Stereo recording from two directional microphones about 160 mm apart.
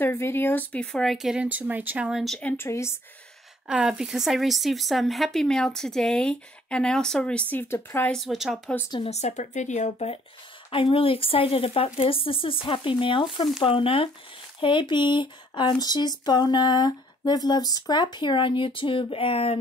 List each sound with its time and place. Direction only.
0.0 s a woman's voice: 15° left (ahead or behind)
3.6 s a woman's voice: 5° right (ahead or behind); by 8.1 s 15° left (ahead or behind)
8.1 s a woman's voice: centre (ahead or behind)
8.9 s speech: 40° left (ahead or behind)
14.6 s a sound: 30° left (ahead or behind)